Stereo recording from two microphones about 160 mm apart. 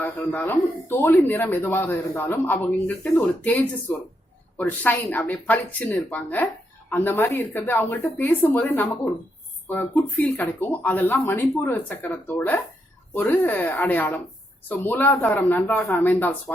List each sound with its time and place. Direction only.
0.3 s speech: 10° left (ahead or behind)